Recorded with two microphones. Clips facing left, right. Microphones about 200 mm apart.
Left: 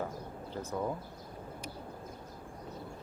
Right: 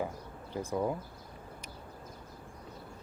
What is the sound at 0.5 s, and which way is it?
Speech, 10° right (ahead or behind).